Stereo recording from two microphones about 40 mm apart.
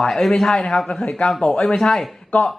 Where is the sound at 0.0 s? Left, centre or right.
Centre.